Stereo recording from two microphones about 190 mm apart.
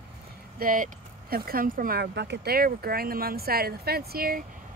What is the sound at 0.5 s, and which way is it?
Speech, 45° right (ahead or behind).